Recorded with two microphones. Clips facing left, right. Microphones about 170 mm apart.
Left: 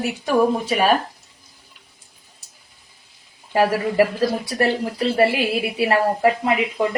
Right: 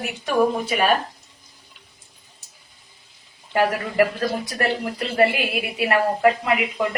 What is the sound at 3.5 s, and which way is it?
A woman's voice, 30° left (ahead or behind).